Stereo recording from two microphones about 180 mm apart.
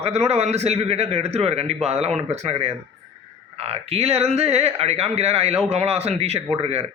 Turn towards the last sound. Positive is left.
turn(degrees=-35)  # may be behind; listen again after turning